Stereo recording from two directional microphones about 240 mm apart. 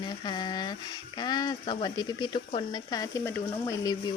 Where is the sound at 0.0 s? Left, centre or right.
Centre.